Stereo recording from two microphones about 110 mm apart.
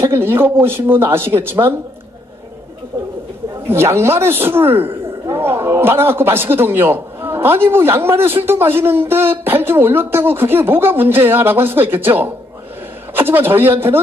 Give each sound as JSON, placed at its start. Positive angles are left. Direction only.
{"t": 0.0, "sound": "a man's voice", "side_deg": -20}
{"t": 3.6, "sound": "a man's voice", "side_deg": -25}